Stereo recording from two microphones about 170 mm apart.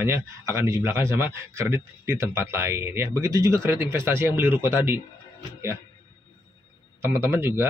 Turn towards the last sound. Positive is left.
turn(degrees=-15)  # may be behind; listen again after turning